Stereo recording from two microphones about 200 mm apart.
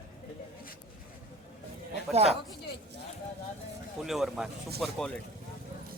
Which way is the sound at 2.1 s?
30° right (ahead or behind).